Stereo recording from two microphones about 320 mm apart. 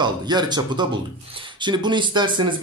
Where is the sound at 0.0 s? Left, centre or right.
Centre.